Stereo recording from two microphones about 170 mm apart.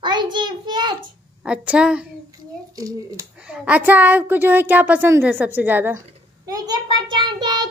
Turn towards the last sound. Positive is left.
turn(degrees=-25)  # may be behind; listen again after turning